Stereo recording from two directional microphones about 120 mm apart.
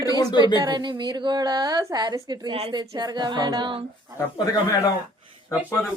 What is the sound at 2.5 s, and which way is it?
Speech, 55° right (ahead or behind).